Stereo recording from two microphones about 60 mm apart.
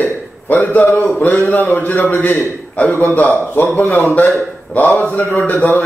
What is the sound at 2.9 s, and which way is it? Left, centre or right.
Speech, left.